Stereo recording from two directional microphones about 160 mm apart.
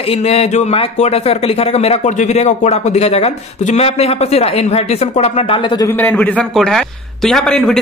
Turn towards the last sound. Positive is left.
turn(degrees=0)  # may be behind; listen again after turning